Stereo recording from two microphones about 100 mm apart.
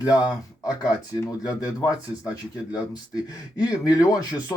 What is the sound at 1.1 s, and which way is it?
Speech, 35° left (ahead or behind).